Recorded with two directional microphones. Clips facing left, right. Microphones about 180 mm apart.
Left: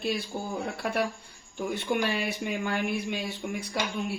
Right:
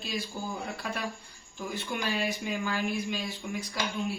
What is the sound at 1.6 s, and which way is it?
A man's voice, 60° left (ahead or behind).